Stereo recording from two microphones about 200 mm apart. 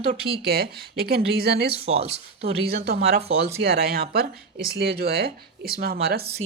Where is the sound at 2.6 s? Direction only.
50° right (ahead or behind).